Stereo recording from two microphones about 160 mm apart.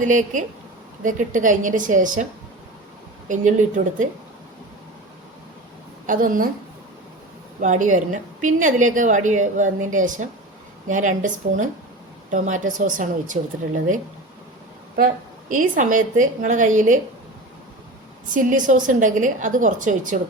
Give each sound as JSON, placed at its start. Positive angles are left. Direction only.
{"t": 0.0, "sound": "a woman's voice", "side_deg": -55}
{"t": 3.2, "sound": "a woman's voice", "side_deg": -50}
{"t": 6.1, "sound": "a woman's voice", "side_deg": -60}
{"t": 7.6, "sound": "a woman's voice", "side_deg": -55}
{"t": 18.3, "sound": "a woman's voice", "side_deg": -55}